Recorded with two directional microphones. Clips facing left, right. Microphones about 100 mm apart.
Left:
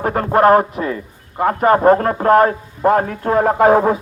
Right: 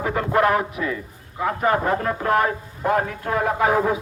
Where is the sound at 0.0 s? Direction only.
50° left (ahead or behind).